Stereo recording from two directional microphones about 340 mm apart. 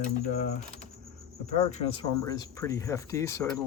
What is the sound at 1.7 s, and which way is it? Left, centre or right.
Speech, centre.